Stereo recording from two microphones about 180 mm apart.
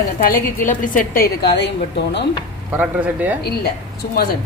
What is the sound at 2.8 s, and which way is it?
Speech, 10° right (ahead or behind).